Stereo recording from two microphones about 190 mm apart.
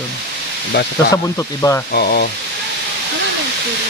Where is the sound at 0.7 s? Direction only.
55° left (ahead or behind).